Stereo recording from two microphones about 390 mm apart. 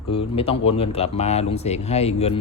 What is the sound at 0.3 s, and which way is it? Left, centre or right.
Speech, centre.